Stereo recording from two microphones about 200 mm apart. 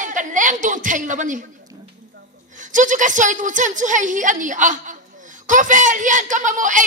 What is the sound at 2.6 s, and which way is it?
A woman's voice, 40° right (ahead or behind).